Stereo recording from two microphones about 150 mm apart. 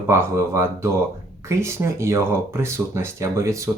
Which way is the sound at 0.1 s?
15° right (ahead or behind).